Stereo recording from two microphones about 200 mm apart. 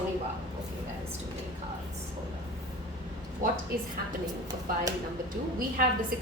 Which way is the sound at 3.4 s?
45° right (ahead or behind).